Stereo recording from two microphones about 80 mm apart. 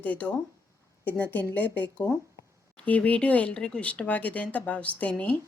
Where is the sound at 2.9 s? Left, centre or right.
Centre.